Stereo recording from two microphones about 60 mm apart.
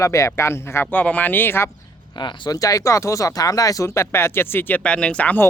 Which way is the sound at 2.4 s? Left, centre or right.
Left.